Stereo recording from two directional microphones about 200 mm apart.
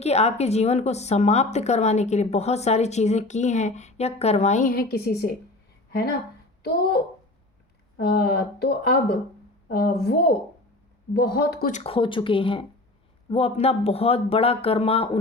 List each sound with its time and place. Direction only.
0.0 s speech: 30° left (ahead or behind); by 5.3 s 50° left (ahead or behind)
6.6 s a child's voice: 50° left (ahead or behind)
8.1 s speech: 55° left (ahead or behind)
11.7 s speech: 30° left (ahead or behind)